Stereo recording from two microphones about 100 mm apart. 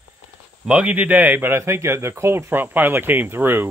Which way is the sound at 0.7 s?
15° right (ahead or behind).